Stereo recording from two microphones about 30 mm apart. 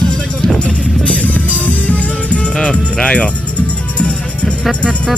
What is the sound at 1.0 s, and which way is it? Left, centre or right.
Music, left.